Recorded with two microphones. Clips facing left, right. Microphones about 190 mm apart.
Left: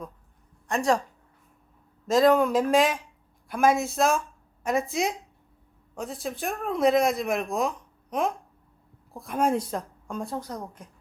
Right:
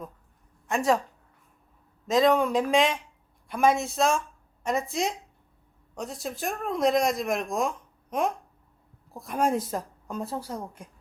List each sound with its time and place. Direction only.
0.7 s speech: 5° right (ahead or behind)
2.0 s speech: centre (ahead or behind)
9.1 s speech: centre (ahead or behind)